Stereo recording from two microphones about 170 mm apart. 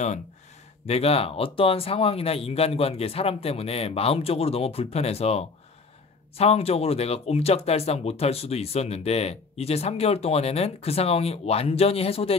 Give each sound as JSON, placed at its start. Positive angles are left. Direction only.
{"t": 0.8, "sound": "speech", "side_deg": 35}